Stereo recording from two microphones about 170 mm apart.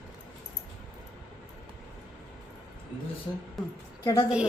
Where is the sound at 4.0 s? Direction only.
20° left (ahead or behind).